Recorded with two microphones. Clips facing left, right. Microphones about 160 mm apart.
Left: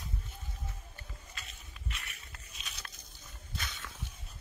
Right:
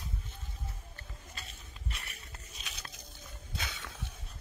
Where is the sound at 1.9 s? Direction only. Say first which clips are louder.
Right 1 dB; 30° right (ahead or behind).